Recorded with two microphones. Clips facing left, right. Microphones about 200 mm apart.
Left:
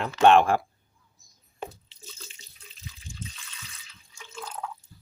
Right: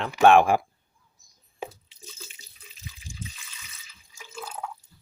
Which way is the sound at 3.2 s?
5° right (ahead or behind).